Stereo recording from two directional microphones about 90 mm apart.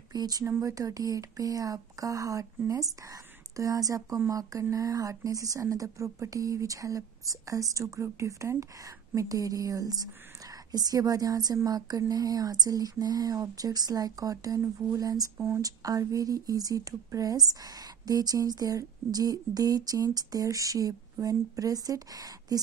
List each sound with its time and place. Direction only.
0.1 s speech: 45° right (ahead or behind)
15.3 s speech: 25° right (ahead or behind)
15.6 s speech: 40° right (ahead or behind)